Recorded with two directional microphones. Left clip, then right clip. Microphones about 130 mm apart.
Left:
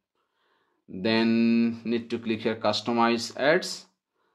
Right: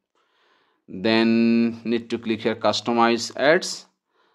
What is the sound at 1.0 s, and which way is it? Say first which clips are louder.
Speech: right 5 dB; 40° right (ahead or behind).